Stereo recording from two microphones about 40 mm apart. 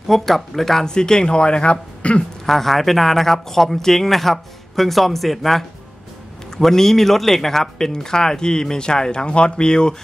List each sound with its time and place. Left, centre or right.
0.1 s speech: centre; by 2.2 s left
2.4 s a man's voice: centre